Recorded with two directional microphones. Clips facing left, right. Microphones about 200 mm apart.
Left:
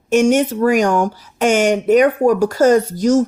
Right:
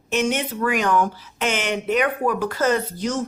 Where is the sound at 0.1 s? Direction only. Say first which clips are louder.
Left 9 dB; 45° left (ahead or behind).